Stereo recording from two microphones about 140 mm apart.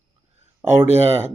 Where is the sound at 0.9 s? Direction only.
15° right (ahead or behind).